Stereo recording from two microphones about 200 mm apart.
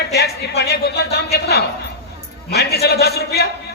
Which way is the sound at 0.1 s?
55° left (ahead or behind).